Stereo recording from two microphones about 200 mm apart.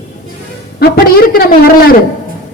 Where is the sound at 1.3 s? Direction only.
50° left (ahead or behind).